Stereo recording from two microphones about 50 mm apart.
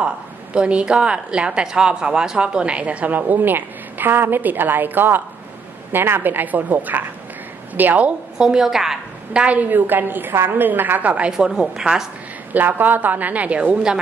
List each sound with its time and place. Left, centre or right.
0.6 s a woman's voice: right
3.2 s a woman's voice: right
8.4 s a woman's voice: centre
9.3 s a woman's voice: right
9.6 s a woman's voice: right
10.7 s a woman's voice: right
11.3 s a woman's voice: centre
12.5 s a woman's voice: right